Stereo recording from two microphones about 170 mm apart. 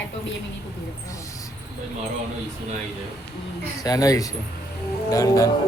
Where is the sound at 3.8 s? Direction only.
20° left (ahead or behind).